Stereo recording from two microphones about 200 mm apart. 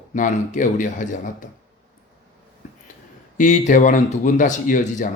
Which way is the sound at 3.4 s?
40° left (ahead or behind).